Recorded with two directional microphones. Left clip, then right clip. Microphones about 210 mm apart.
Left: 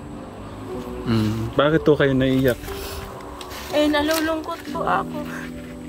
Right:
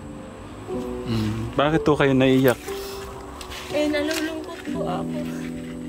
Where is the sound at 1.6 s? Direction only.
Centre (ahead or behind).